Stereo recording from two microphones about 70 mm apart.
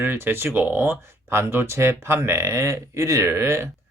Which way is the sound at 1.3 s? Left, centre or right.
Right.